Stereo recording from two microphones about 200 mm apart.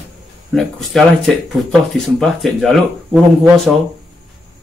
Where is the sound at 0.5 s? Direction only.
Centre (ahead or behind).